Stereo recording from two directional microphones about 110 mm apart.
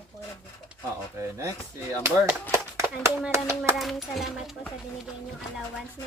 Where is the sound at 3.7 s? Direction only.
Centre (ahead or behind).